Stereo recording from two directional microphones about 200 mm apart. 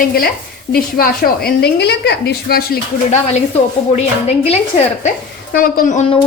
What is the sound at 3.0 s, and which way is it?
Speech, 35° left (ahead or behind).